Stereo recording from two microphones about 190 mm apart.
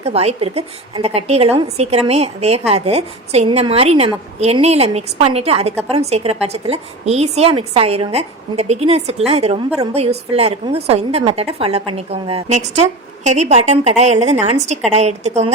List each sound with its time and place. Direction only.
0.0 s a woman's voice: 30° right (ahead or behind)